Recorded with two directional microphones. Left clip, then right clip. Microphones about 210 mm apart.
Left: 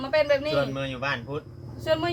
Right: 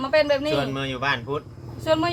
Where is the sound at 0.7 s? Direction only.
55° right (ahead or behind).